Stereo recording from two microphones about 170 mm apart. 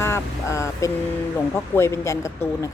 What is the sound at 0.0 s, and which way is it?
Vehicle, 15° left (ahead or behind).